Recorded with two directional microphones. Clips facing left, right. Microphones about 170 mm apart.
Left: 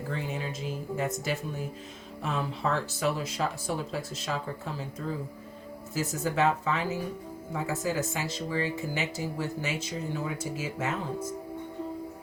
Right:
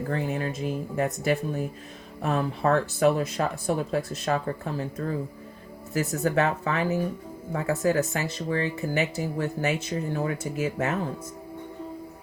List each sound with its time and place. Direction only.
0.1 s speech: 55° right (ahead or behind)